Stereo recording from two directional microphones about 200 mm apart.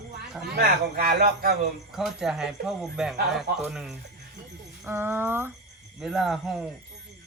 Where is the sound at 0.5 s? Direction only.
50° right (ahead or behind).